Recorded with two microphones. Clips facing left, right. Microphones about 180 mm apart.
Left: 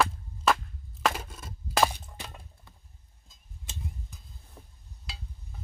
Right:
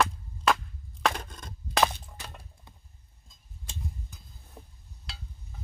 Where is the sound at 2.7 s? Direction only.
20° right (ahead or behind).